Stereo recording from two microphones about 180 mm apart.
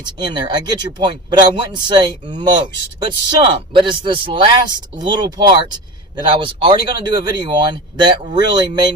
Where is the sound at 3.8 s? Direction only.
25° right (ahead or behind).